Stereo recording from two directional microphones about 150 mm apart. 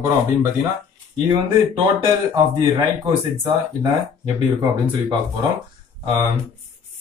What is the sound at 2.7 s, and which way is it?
Speech, 25° right (ahead or behind).